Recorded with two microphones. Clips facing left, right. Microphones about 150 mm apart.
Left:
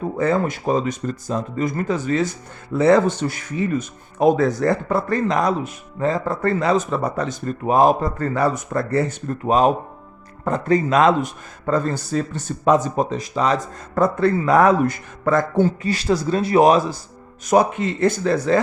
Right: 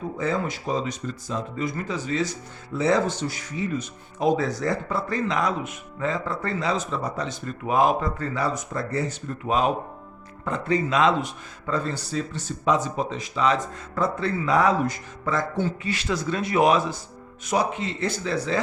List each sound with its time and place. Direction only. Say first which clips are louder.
0.2 s speech: left 7 dB; 55° left (ahead or behind)
5.4 s speech: left 5 dB; 40° left (ahead or behind)
17.4 s speech: left 8 dB; 50° left (ahead or behind)